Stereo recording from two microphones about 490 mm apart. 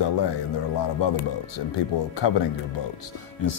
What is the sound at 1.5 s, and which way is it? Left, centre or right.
Speech, left.